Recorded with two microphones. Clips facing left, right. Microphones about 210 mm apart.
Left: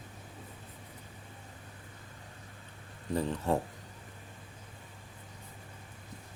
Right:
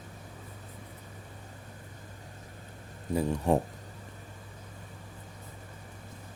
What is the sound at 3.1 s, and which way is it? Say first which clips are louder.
Speech: right 4 dB; 10° right (ahead or behind).